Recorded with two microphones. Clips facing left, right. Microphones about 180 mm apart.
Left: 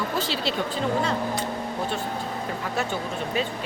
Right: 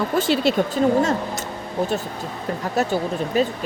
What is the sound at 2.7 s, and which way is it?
Speech, 40° right (ahead or behind).